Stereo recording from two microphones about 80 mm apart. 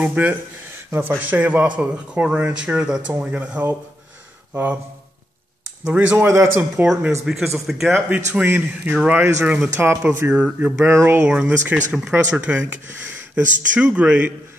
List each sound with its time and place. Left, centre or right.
0.0 s speech: centre
5.9 s speech: right
6.2 s speech: right
6.8 s speech: right
7.2 s speech: centre
7.9 s speech: right
9.8 s speech: right
11.2 s speech: centre